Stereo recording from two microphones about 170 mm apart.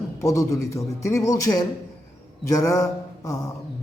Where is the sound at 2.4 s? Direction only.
20° left (ahead or behind).